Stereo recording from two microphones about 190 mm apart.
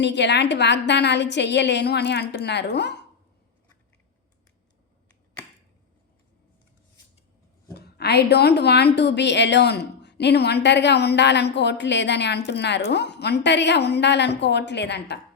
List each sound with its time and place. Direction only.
0.0 s a woman's voice: 65° left (ahead or behind)
7.7 s a woman's voice: 60° left (ahead or behind)